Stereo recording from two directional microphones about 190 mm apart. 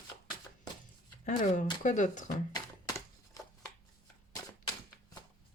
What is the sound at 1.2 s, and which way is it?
Speech, 40° left (ahead or behind).